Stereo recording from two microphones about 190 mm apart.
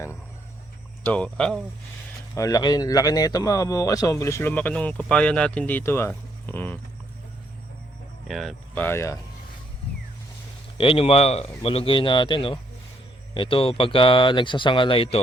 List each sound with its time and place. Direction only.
1.0 s speech: 5° left (ahead or behind)
2.3 s a man's voice: 20° left (ahead or behind)
8.3 s a man's voice: centre (ahead or behind)
10.8 s speech: 30° left (ahead or behind)